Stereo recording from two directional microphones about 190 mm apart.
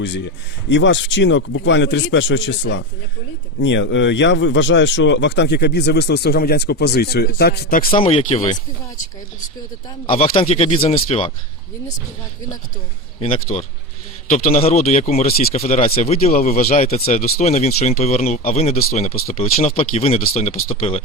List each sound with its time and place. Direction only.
0.7 s a man's voice: 70° left (ahead or behind); by 7.9 s 55° left (ahead or behind)
7.9 s speech: 30° left (ahead or behind)
10.2 s speech: 30° left (ahead or behind)
13.1 s speech: 30° left (ahead or behind)
16.7 s speech: 35° left (ahead or behind)